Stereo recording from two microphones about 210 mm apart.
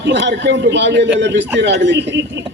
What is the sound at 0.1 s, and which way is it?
A man's voice, 55° right (ahead or behind).